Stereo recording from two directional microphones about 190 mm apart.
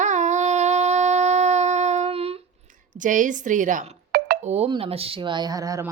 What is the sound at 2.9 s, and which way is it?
A woman's voice, 45° right (ahead or behind).